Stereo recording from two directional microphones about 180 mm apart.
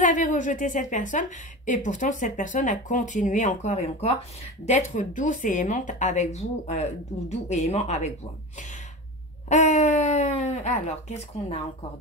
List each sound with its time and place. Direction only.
0.0 s speech: 45° left (ahead or behind)
9.5 s speech: 40° left (ahead or behind)